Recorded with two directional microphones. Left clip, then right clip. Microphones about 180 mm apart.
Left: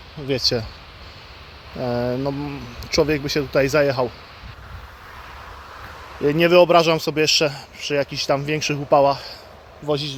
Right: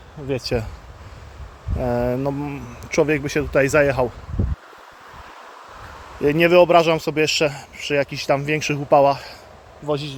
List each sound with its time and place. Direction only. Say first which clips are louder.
0.3 s speech: left 5 dB; 5° right (ahead or behind)
1.8 s a man's voice: right 1 dB; 25° right (ahead or behind)
6.1 s a man's voice: even; 25° right (ahead or behind)
9.8 s speech: left 1 dB; centre (ahead or behind)